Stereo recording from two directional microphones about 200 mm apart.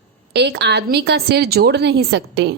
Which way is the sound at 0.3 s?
55° right (ahead or behind).